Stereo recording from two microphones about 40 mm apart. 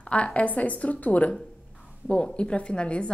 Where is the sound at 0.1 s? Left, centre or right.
Left.